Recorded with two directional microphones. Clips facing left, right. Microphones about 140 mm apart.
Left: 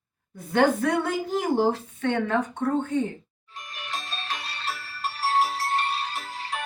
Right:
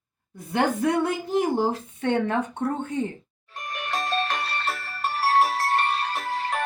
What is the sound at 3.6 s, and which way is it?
Music, 55° right (ahead or behind).